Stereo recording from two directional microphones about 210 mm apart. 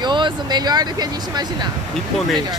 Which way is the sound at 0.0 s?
20° right (ahead or behind).